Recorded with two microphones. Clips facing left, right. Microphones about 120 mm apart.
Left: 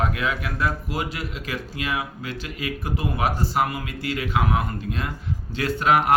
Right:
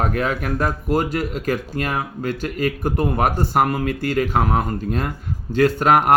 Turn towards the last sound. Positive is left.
turn(degrees=-45)  # may be behind; listen again after turning